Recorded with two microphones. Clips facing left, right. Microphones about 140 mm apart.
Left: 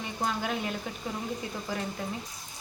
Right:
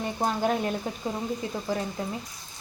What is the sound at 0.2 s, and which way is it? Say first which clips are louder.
Speech: right 5 dB; 40° right (ahead or behind).